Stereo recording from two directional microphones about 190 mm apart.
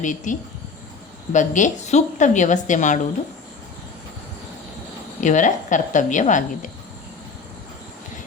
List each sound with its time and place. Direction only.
0.0 s a woman's voice: 40° left (ahead or behind)
5.2 s a woman's voice: 40° left (ahead or behind)